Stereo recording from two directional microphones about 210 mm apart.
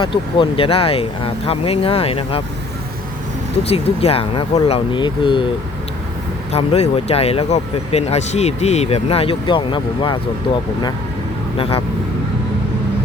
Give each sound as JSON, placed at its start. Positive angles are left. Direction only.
{"t": 0.0, "sound": "speech", "side_deg": 25}
{"t": 3.7, "sound": "speech", "side_deg": 30}
{"t": 6.5, "sound": "speech", "side_deg": 30}
{"t": 11.5, "sound": "speech", "side_deg": 25}